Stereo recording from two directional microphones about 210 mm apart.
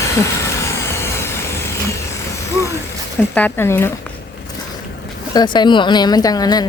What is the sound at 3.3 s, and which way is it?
Speech, 10° left (ahead or behind).